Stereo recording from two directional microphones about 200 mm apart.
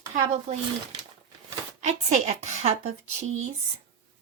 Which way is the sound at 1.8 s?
35° right (ahead or behind).